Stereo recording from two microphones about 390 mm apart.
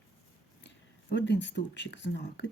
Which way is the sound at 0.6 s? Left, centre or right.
Left.